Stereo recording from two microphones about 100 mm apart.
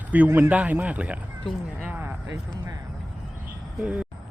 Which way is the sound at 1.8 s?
20° right (ahead or behind).